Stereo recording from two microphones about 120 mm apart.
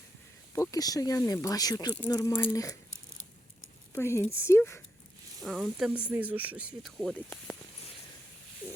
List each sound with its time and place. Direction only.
0.5 s speech: 25° left (ahead or behind)
3.9 s speech: 20° left (ahead or behind)
5.4 s speech: centre (ahead or behind)
6.8 s speech: 5° left (ahead or behind)